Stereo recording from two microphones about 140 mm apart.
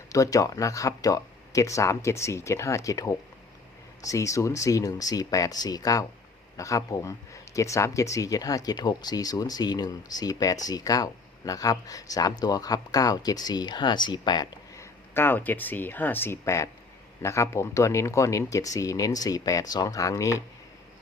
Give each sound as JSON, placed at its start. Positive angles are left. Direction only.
{"t": 0.1, "sound": "speech", "side_deg": 25}
{"t": 15.1, "sound": "speech", "side_deg": 15}